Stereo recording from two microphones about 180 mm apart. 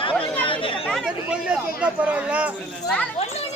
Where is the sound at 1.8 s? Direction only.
5° right (ahead or behind).